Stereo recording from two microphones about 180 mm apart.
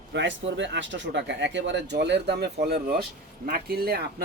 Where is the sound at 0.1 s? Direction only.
90° right.